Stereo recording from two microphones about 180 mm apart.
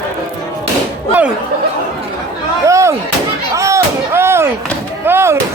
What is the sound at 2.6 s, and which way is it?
Slam, 15° right (ahead or behind).